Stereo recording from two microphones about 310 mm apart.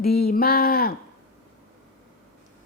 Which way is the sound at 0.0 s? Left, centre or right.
Left.